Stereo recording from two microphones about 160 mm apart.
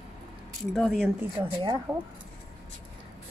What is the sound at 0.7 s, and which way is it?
Speech, 5° left (ahead or behind).